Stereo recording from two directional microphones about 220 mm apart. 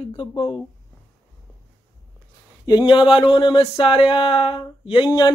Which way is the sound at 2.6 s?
20° left (ahead or behind).